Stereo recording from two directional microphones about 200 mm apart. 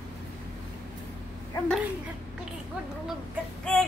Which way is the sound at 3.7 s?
5° left (ahead or behind).